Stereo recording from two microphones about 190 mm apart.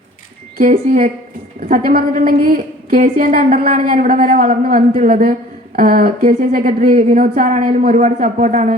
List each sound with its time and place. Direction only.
0.6 s a woman's voice: 40° right (ahead or behind)